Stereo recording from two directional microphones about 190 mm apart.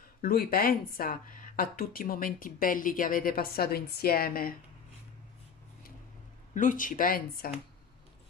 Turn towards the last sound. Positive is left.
turn(degrees=50)  # may be behind; listen again after turning